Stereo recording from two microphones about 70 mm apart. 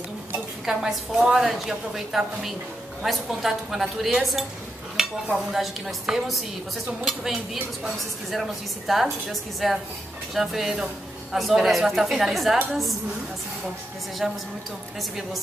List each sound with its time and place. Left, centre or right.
0.7 s a woman's voice: centre
14.2 s a woman's voice: centre